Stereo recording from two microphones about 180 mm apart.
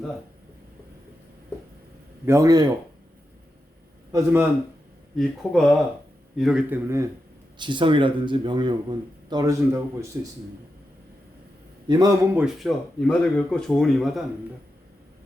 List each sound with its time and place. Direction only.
2.2 s speech: 15° right (ahead or behind)
4.1 s speech: 10° right (ahead or behind)
5.1 s speech: centre (ahead or behind)
7.6 s speech: 25° right (ahead or behind)
11.9 s speech: 20° right (ahead or behind)
12.4 s speech: centre (ahead or behind)